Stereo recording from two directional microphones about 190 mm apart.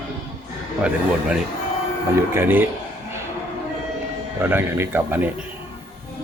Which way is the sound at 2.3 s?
10° right (ahead or behind).